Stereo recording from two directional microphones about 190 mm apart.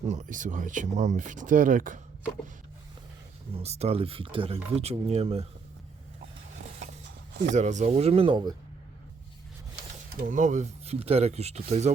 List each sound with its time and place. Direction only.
0.1 s speech: 40° right (ahead or behind)
3.5 s speech: 35° right (ahead or behind)
7.5 s speech: 40° right (ahead or behind)
10.2 s speech: 40° right (ahead or behind)